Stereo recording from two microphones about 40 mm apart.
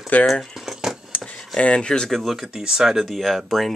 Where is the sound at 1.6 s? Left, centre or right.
Left.